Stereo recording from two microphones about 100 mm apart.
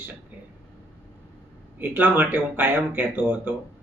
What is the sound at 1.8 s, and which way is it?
Speech, 20° right (ahead or behind).